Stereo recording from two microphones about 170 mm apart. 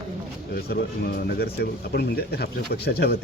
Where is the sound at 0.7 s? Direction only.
70° left (ahead or behind).